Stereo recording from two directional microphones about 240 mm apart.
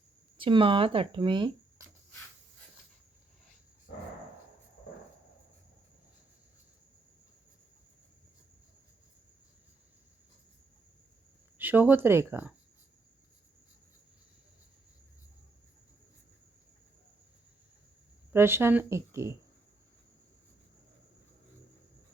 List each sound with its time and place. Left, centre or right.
0.3 s speech: right
3.9 s a sound: left
11.5 s speech: centre
18.3 s speech: centre